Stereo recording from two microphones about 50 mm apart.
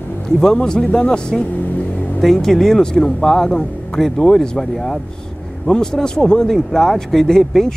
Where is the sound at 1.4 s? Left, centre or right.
Left.